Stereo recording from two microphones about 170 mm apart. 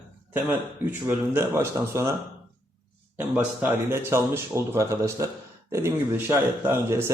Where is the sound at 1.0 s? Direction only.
15° right (ahead or behind).